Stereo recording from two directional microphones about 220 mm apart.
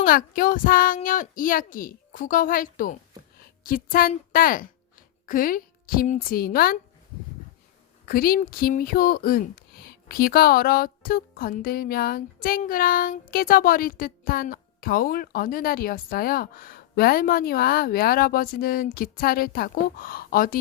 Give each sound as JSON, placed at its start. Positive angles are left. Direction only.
{"t": 0.0, "sound": "a woman's voice", "side_deg": 40}
{"t": 8.0, "sound": "speech", "side_deg": 40}